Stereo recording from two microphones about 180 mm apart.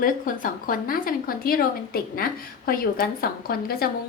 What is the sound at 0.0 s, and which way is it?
A woman's voice, 50° left (ahead or behind).